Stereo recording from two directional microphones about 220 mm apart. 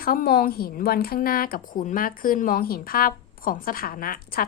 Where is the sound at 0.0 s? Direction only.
40° left (ahead or behind).